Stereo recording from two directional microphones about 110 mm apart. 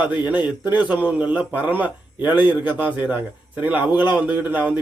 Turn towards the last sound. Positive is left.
turn(degrees=-15)  # may be behind; listen again after turning